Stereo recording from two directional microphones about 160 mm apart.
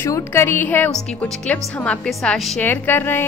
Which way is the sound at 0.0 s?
15° left (ahead or behind).